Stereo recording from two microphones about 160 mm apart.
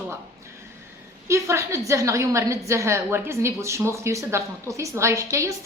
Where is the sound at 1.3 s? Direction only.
15° right (ahead or behind).